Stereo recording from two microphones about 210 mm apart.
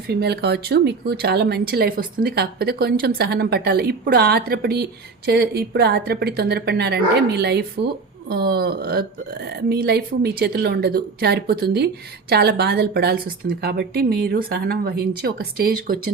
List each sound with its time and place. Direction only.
0.1 s a woman's voice: 50° right (ahead or behind)